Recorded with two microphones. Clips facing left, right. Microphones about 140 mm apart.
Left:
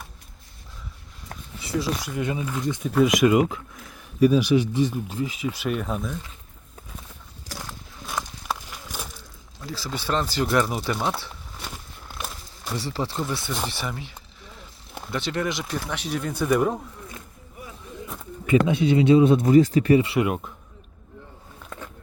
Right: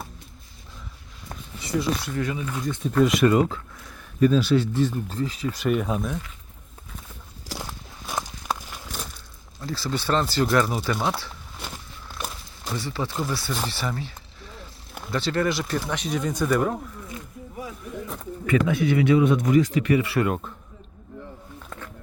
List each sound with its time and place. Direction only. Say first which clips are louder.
1.3 s a sound: right 1 dB; centre (ahead or behind)
2.0 s speech: even; 15° left (ahead or behind)
5.6 s speech: right 5 dB; 5° right (ahead or behind)
9.6 s speech: right 3 dB; 10° left (ahead or behind)
10.9 s speech: even; 5° right (ahead or behind)
12.7 s speech: left 1 dB; 35° left (ahead or behind)
13.3 s speech: even; 20° left (ahead or behind)
15.1 s speech: right 3 dB; 15° left (ahead or behind)
18.4 s speech: left 2 dB; 25° left (ahead or behind)